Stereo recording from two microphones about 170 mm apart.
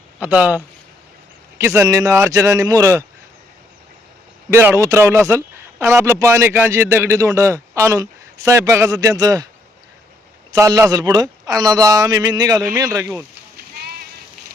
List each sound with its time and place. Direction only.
0.2 s a man's voice: 10° right (ahead or behind)
4.5 s a man's voice: 15° right (ahead or behind)
10.5 s a man's voice: 20° right (ahead or behind)
13.6 s sheep: 65° right (ahead or behind)